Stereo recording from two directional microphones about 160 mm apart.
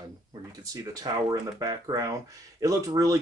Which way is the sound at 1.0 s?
25° right (ahead or behind).